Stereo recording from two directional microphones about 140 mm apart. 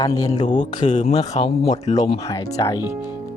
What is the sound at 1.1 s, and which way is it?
Speech, 30° left (ahead or behind).